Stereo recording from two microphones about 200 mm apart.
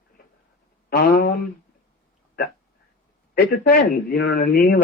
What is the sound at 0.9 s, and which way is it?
Speech, 50° left (ahead or behind).